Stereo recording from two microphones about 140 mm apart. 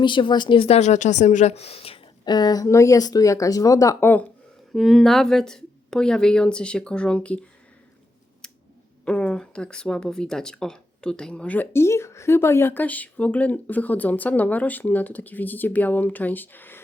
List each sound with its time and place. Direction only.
0.0 s a woman's voice: 35° left (ahead or behind)
2.2 s speech: 30° left (ahead or behind)
4.7 s a woman's voice: centre (ahead or behind)
8.4 s scissors: 5° left (ahead or behind)
9.0 s speech: 5° left (ahead or behind)